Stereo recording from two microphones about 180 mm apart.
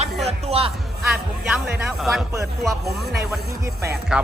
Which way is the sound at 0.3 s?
35° right (ahead or behind).